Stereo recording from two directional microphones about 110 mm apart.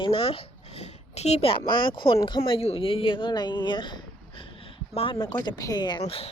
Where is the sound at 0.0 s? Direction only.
55° left (ahead or behind).